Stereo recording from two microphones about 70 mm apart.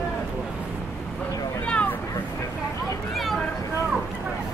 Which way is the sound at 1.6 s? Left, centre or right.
Centre.